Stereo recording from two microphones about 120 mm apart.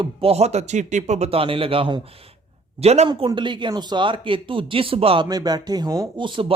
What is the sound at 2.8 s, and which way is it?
Speech, 60° right (ahead or behind).